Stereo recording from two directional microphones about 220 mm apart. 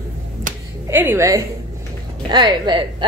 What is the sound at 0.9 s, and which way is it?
A woman's voice, 10° right (ahead or behind).